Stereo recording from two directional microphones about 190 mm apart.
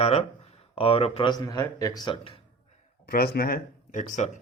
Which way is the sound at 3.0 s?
55° left (ahead or behind).